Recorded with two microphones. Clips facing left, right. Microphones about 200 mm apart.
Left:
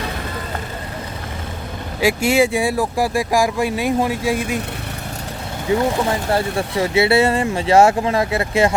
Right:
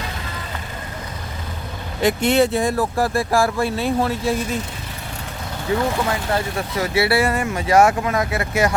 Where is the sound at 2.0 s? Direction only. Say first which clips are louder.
Left 1 dB; 10° left (ahead or behind).